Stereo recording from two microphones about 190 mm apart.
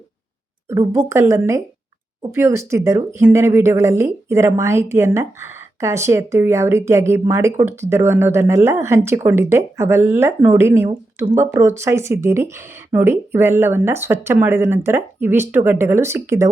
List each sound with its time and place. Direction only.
0.7 s a woman's voice: 15° right (ahead or behind)